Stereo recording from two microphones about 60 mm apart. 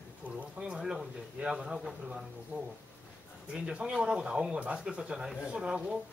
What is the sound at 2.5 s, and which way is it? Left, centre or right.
Speech, right.